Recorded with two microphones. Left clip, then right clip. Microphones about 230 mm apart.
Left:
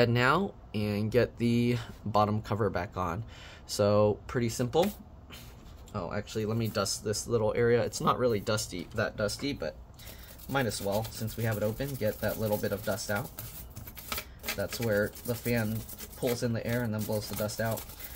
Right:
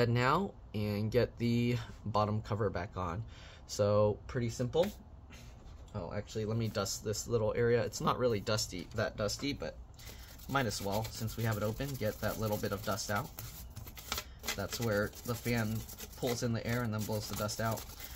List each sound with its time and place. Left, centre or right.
0.0 s speech: centre; by 4.8 s left
5.9 s speech: centre